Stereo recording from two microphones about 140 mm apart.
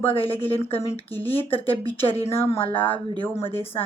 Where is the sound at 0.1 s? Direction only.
40° left (ahead or behind).